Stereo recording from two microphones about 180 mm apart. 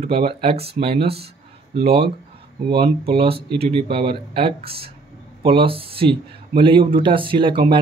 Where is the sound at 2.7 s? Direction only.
30° right (ahead or behind).